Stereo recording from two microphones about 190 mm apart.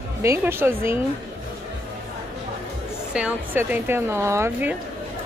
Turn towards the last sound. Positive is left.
turn(degrees=-10)  # may be behind; listen again after turning